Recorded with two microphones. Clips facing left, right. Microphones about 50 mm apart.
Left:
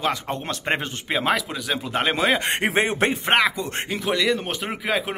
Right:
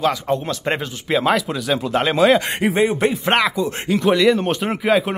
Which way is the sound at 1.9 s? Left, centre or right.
Left.